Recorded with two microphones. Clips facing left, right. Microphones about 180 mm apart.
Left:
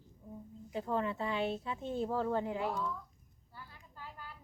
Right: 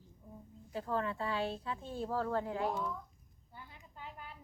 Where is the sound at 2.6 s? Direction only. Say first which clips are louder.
Even; 20° right (ahead or behind).